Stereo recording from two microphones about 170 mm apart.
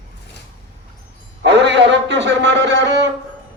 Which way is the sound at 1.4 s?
90° right.